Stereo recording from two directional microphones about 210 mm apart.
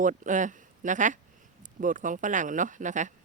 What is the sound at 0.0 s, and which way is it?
A woman's voice, 35° right (ahead or behind).